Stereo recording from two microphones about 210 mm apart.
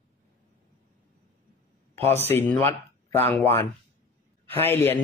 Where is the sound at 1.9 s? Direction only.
10° left (ahead or behind).